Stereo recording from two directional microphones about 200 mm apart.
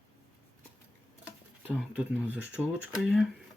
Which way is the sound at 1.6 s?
5° left (ahead or behind).